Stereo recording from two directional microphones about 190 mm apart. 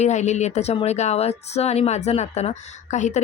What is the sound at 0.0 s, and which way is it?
Speech, 35° left (ahead or behind).